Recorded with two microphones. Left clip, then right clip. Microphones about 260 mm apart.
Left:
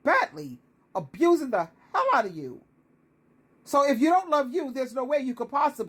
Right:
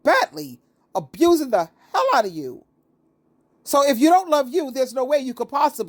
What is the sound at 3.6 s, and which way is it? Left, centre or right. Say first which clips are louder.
Speech: right 6 dB; right.